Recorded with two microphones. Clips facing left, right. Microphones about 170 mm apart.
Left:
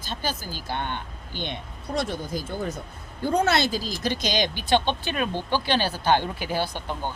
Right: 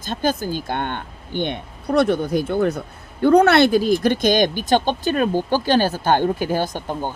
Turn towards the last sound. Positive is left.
turn(degrees=-45)  # may be behind; listen again after turning